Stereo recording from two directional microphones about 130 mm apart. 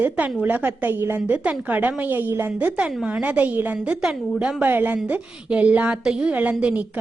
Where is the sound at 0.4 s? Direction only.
15° right (ahead or behind).